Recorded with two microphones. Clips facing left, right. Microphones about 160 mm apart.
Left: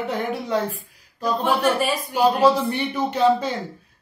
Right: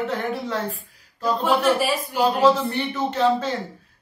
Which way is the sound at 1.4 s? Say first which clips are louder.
Right 1 dB; 5° right (ahead or behind).